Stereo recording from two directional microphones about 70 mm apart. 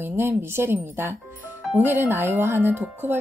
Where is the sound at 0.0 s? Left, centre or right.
Right.